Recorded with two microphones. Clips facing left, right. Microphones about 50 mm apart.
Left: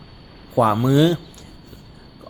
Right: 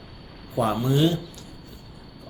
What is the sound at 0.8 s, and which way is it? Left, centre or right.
Speech, left.